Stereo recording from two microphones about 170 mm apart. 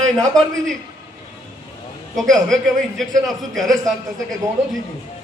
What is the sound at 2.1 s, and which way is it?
A man's voice, centre (ahead or behind).